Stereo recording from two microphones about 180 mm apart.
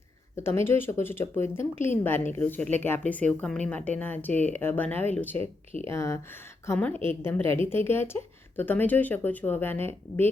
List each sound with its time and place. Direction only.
0.3 s speech: 15° left (ahead or behind)
4.3 s speech: 40° right (ahead or behind)
4.5 s speech: 10° left (ahead or behind)